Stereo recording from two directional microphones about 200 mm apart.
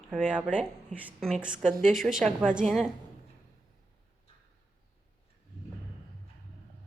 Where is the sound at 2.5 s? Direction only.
Centre (ahead or behind).